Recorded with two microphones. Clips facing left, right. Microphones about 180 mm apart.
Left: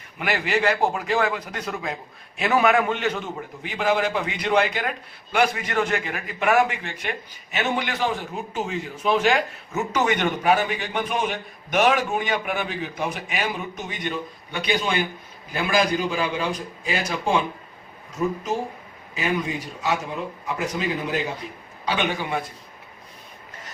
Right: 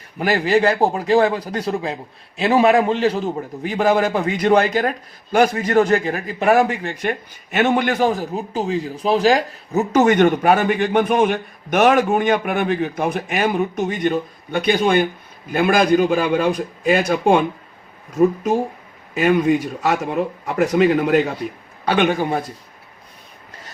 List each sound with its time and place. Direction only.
0.2 s a man's voice: 35° right (ahead or behind); by 17.4 s 55° right (ahead or behind)
19.1 s speech: 60° right (ahead or behind)
21.8 s a man's voice: 50° right (ahead or behind)